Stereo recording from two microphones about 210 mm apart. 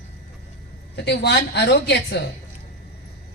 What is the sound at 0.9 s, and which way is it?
A woman's voice, 55° left (ahead or behind).